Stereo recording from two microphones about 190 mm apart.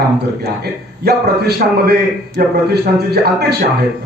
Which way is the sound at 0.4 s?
55° right (ahead or behind).